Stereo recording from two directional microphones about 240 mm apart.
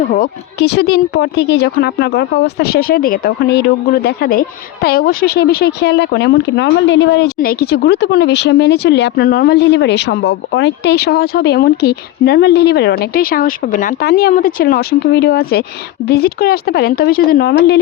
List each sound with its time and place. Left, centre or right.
0.1 s speech: left